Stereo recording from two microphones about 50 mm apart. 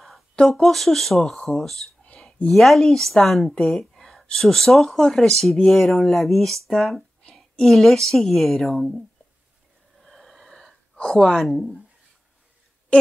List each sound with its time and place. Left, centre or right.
0.4 s a woman's voice: centre
8.7 s speech: centre
10.0 s snort: centre
11.0 s speech: centre
11.4 s speech: centre